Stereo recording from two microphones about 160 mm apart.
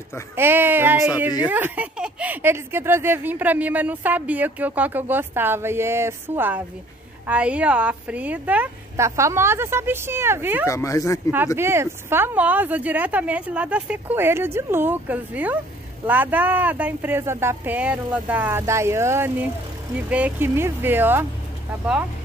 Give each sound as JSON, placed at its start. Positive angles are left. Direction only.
{"t": 0.4, "sound": "speech", "side_deg": -15}
{"t": 10.7, "sound": "speech", "side_deg": 20}
{"t": 11.3, "sound": "speech", "side_deg": -15}